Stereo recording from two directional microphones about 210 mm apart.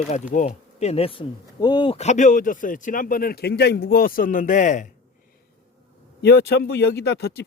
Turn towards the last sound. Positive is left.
turn(degrees=50)  # may be behind; listen again after turning